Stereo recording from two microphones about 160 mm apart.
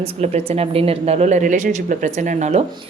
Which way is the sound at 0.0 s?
40° right (ahead or behind).